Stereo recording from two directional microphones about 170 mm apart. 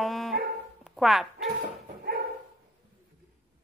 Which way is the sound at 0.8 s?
Centre (ahead or behind).